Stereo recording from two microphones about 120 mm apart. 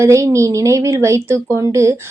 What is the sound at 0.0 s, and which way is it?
A woman's voice, 25° right (ahead or behind).